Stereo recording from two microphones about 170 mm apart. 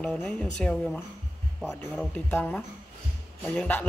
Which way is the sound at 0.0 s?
5° left (ahead or behind).